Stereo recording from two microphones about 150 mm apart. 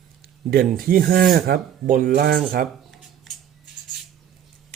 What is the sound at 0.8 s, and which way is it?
Speech, 75° right (ahead or behind).